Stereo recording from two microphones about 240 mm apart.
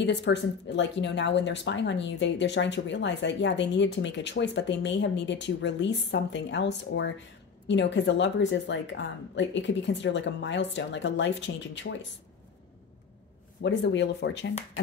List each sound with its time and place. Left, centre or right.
0.0 s speech: left
13.6 s speech: left